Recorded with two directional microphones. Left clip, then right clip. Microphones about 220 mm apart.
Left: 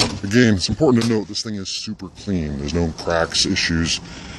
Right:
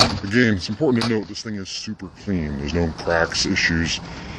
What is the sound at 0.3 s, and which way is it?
Speech, 40° left (ahead or behind).